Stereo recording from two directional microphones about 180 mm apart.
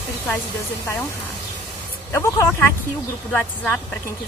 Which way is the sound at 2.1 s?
15° left (ahead or behind).